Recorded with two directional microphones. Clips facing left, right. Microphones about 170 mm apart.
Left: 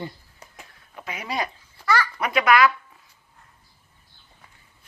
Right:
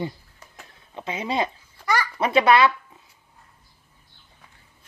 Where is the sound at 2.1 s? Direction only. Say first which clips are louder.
Right 4 dB; 30° right (ahead or behind).